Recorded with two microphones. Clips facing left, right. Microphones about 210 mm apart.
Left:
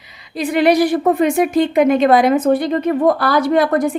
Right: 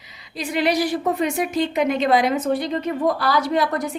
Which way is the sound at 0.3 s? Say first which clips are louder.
Left 7 dB; 55° left (ahead or behind).